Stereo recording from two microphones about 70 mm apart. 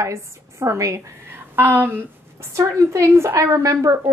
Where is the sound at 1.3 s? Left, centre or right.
Right.